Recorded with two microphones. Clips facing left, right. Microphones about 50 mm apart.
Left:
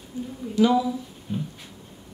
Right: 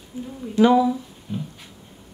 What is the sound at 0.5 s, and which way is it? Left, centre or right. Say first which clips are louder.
Speech: right 4 dB; right.